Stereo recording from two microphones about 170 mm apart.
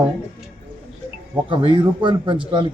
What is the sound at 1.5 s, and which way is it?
Speech, 30° right (ahead or behind).